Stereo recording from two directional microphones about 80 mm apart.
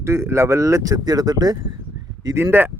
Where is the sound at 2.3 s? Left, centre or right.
Right.